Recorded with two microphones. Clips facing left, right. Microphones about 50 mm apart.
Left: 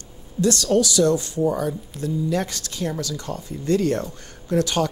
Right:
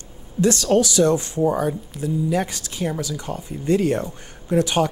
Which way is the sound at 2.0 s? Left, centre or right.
Centre.